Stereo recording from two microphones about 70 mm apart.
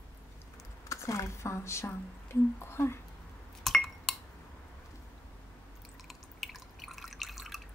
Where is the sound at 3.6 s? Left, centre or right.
Centre.